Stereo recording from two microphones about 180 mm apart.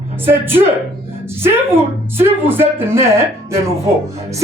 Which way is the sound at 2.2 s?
10° right (ahead or behind).